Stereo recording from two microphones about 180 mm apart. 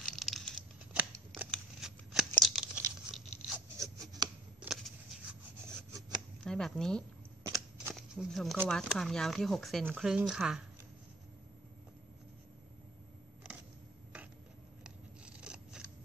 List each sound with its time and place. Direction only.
0.0 s tearing: centre (ahead or behind)
1.5 s scissors: 5° right (ahead or behind)
3.5 s a sound: 20° right (ahead or behind)
6.4 s speech: 5° left (ahead or behind)
7.4 s shuffling cards: 20° right (ahead or behind)
7.9 s a sound: centre (ahead or behind)
8.6 s speech: 5° left (ahead or behind)
14.8 s scissors: 5° right (ahead or behind)